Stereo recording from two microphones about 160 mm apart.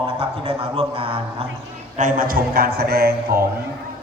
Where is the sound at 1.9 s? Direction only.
55° right (ahead or behind); by 3.4 s 70° right (ahead or behind).